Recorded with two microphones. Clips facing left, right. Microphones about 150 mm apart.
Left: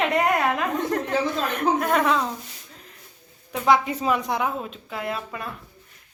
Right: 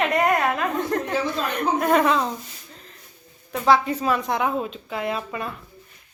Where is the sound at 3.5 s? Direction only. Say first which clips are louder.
Right 1 dB; 15° left (ahead or behind).